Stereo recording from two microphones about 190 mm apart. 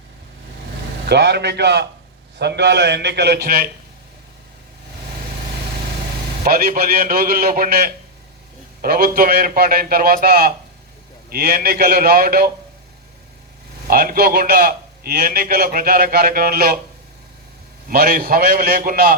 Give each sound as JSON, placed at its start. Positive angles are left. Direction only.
{"t": 1.0, "sound": "a man's voice", "side_deg": -60}
{"t": 6.4, "sound": "a man's voice", "side_deg": -50}
{"t": 13.8, "sound": "a man's voice", "side_deg": -50}
{"t": 17.8, "sound": "a man's voice", "side_deg": -55}